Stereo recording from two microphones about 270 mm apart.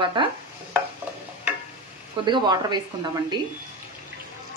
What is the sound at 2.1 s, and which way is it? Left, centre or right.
A woman's voice, centre.